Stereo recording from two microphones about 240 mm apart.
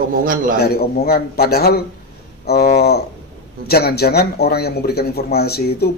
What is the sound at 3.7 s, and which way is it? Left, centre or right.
Speech, left.